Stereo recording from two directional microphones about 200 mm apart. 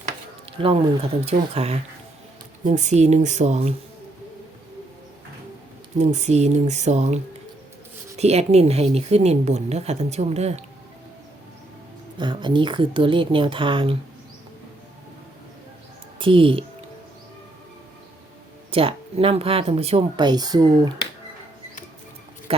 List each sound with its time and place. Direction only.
0.6 s speech: 30° right (ahead or behind)
6.0 s speech: 35° right (ahead or behind)
12.1 s speech: 25° right (ahead or behind)
16.1 s speech: 25° right (ahead or behind)
18.7 s speech: 30° right (ahead or behind)